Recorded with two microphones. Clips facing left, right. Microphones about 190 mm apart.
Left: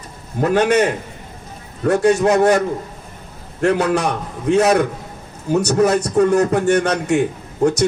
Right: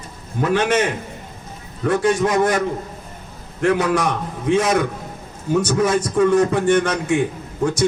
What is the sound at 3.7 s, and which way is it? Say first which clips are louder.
A man's voice: left 1 dB; 65° left (ahead or behind).